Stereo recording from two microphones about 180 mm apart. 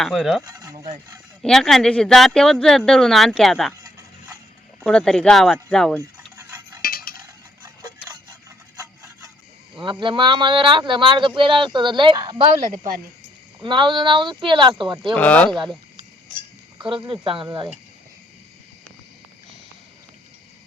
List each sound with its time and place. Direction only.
0.0 s speech: centre (ahead or behind)
0.4 s speech: 20° right (ahead or behind)
1.4 s speech: centre (ahead or behind)
4.9 s speech: 5° left (ahead or behind)
6.0 s stir: 15° right (ahead or behind)
6.8 s cutlery: 55° left (ahead or behind)
9.8 s speech: 25° right (ahead or behind)
13.6 s speech: 25° right (ahead or behind)
15.1 s speech: 10° left (ahead or behind)
16.7 s speech: 25° right (ahead or behind)